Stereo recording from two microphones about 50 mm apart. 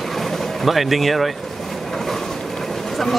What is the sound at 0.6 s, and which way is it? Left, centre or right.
Speech, centre.